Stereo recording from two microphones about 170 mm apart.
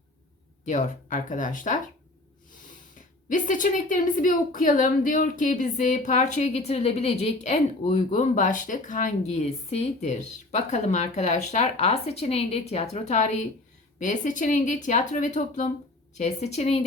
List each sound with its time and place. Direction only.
0.6 s a woman's voice: 45° left (ahead or behind)
3.2 s a woman's voice: 50° left (ahead or behind)